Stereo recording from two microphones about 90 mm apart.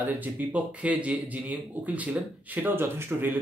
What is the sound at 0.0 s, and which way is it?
Speech, 20° right (ahead or behind).